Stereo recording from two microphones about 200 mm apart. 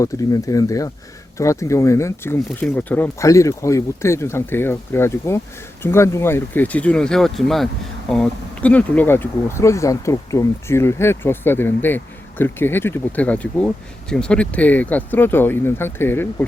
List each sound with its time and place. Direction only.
0.0 s speech: 15° left (ahead or behind)